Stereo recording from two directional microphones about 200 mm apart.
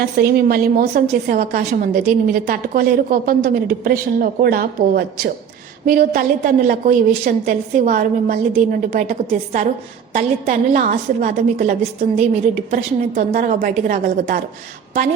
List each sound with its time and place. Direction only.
0.0 s a woman's voice: 50° right (ahead or behind)